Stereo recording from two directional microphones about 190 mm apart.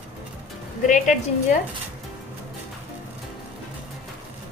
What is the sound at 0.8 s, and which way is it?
Speech, 40° left (ahead or behind).